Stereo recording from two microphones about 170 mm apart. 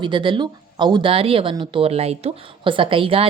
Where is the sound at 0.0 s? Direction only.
30° right (ahead or behind).